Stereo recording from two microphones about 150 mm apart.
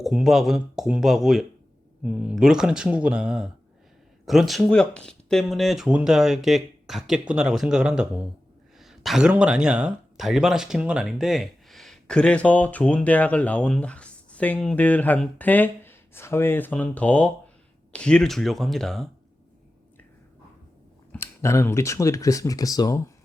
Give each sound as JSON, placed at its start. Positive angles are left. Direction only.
{"t": 0.0, "sound": "speech", "side_deg": -5}
{"t": 21.1, "sound": "speech", "side_deg": 20}